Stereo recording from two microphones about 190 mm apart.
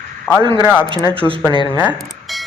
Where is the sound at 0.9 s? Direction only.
15° right (ahead or behind); by 2.4 s centre (ahead or behind).